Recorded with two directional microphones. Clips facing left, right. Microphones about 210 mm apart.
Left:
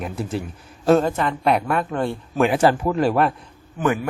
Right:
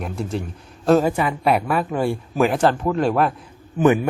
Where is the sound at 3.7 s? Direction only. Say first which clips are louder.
Right 5 dB; 25° right (ahead or behind).